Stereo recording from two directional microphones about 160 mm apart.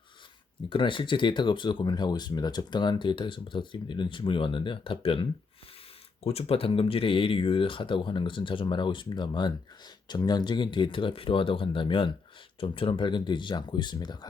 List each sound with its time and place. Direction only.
0.7 s speech: 30° left (ahead or behind)